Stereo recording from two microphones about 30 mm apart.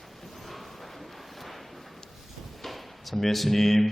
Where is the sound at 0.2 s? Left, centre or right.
Centre.